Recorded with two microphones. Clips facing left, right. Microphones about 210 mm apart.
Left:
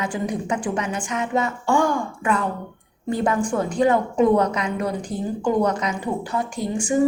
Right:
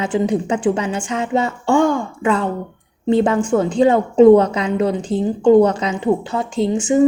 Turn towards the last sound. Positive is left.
turn(degrees=-25)  # may be behind; listen again after turning